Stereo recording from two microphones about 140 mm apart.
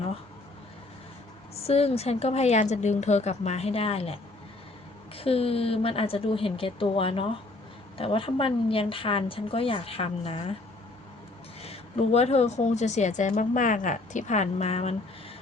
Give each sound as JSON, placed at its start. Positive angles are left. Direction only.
{"t": 1.6, "sound": "a woman's voice", "side_deg": 45}
{"t": 11.6, "sound": "a woman's voice", "side_deg": 45}